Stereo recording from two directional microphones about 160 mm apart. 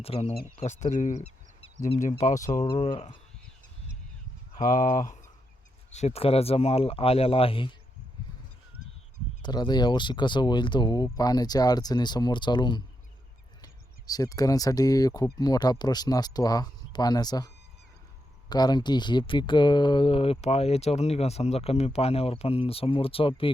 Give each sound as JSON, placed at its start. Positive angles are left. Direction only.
{"t": 0.0, "sound": "speech", "side_deg": 40}
{"t": 2.7, "sound": "speech", "side_deg": 40}
{"t": 4.5, "sound": "speech", "side_deg": 55}
{"t": 5.9, "sound": "speech", "side_deg": 45}
{"t": 9.4, "sound": "speech", "side_deg": 25}
{"t": 14.1, "sound": "speech", "side_deg": 20}